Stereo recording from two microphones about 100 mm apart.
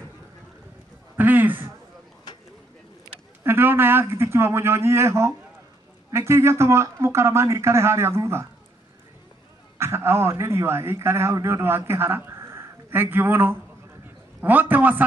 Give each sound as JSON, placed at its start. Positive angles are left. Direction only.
{"t": 1.1, "sound": "a man's voice", "side_deg": -20}
{"t": 3.4, "sound": "speech", "side_deg": -20}
{"t": 9.8, "sound": "a man's voice", "side_deg": -25}